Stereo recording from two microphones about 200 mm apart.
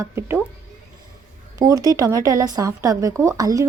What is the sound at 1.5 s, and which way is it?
Speech, 20° right (ahead or behind).